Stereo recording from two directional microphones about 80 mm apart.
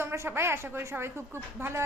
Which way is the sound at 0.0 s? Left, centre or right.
Right.